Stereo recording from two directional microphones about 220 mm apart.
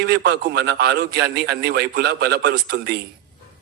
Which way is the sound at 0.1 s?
50° right (ahead or behind).